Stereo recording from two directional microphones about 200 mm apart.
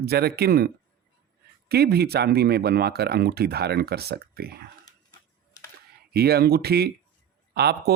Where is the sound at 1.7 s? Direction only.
55° right (ahead or behind).